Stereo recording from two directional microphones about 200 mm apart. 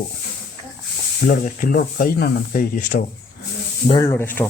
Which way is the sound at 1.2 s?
45° left (ahead or behind).